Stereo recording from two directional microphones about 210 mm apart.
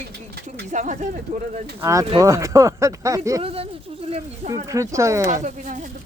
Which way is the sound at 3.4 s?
25° right (ahead or behind).